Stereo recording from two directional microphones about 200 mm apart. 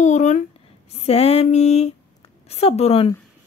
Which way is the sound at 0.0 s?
35° left (ahead or behind).